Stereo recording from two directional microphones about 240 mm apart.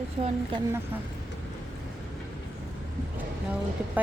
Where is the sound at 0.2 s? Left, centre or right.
Right.